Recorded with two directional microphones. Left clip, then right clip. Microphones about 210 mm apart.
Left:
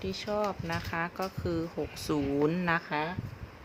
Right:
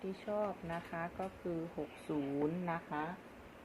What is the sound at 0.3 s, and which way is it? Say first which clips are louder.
Speech: left 6 dB; 50° left (ahead or behind).